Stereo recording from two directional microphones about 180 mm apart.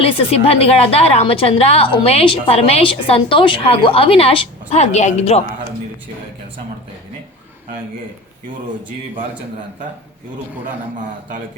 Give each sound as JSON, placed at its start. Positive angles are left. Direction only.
{"t": 0.0, "sound": "a woman's voice", "side_deg": 35}